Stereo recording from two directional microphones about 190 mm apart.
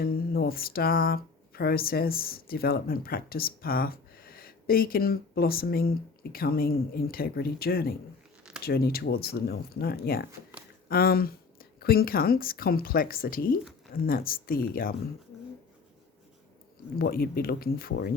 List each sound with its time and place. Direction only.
0.0 s speech: 50° left (ahead or behind)
17.0 s speech: 50° left (ahead or behind)